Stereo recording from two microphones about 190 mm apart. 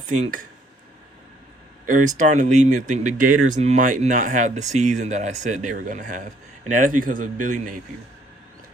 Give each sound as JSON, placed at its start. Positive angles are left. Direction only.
{"t": 0.0, "sound": "speech", "side_deg": -40}
{"t": 1.9, "sound": "speech", "side_deg": -40}